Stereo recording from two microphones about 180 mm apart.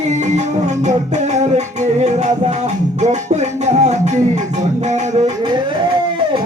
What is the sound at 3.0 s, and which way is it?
Music, 40° right (ahead or behind).